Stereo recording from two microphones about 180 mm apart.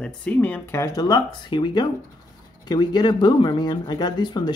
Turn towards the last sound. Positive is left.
turn(degrees=25)  # may be behind; listen again after turning